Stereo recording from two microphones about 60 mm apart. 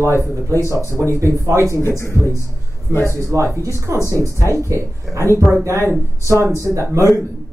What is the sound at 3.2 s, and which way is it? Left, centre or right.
Speech, right.